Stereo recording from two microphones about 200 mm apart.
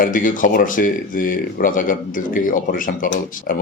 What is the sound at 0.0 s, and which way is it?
Speech, 40° left (ahead or behind).